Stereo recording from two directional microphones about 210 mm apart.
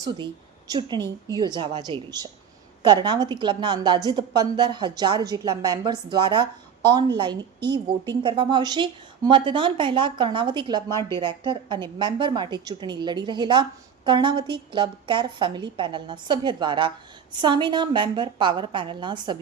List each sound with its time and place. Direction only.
0.7 s a woman's voice: 20° right (ahead or behind)